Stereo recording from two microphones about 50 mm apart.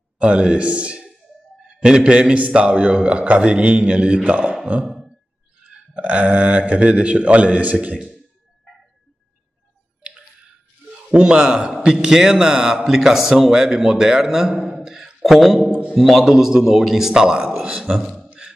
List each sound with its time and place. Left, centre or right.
0.2 s a man's voice: right
4.8 s a sound: centre
5.9 s a man's voice: right
11.1 s a man's voice: centre
17.9 s speech: centre